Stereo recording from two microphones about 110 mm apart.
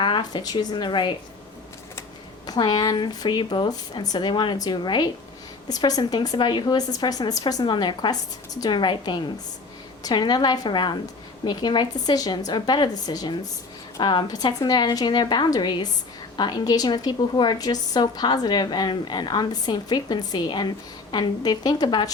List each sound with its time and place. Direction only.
0.0 s speech: 45° left (ahead or behind)
2.5 s a woman's voice: 40° left (ahead or behind)